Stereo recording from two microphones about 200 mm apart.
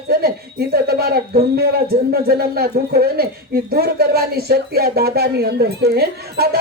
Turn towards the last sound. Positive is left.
turn(degrees=-50)  # may be behind; listen again after turning